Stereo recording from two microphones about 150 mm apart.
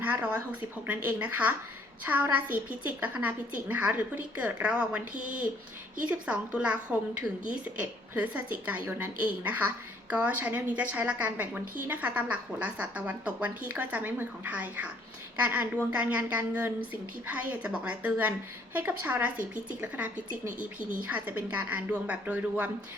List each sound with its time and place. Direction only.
0.0 s a woman's voice: 10° right (ahead or behind)
10.1 s a woman's voice: 10° right (ahead or behind)